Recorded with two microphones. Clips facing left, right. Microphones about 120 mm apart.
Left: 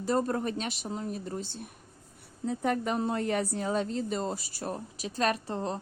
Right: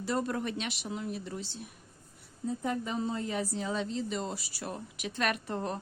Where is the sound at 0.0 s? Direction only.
40° left (ahead or behind).